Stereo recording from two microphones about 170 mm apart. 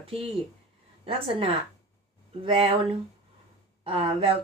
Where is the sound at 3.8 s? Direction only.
35° right (ahead or behind).